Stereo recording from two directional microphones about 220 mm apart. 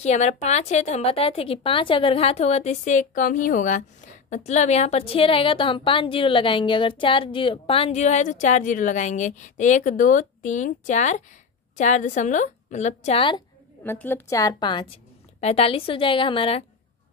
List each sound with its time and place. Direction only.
0.0 s a woman's voice: 30° left (ahead or behind)
13.8 s a woman's voice: 10° left (ahead or behind); by 16.6 s 25° left (ahead or behind)